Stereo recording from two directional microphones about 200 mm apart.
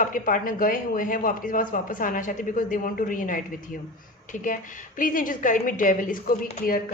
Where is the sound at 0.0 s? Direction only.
40° left (ahead or behind).